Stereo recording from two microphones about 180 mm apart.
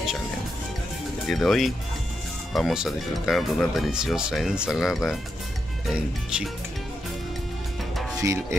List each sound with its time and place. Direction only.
1.2 s speech: centre (ahead or behind)
8.2 s speech: 15° right (ahead or behind)